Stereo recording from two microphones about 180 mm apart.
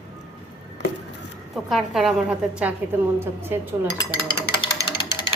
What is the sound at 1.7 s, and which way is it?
A woman's voice, centre (ahead or behind).